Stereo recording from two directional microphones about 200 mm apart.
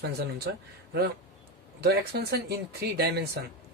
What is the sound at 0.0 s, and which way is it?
Speech, 55° right (ahead or behind).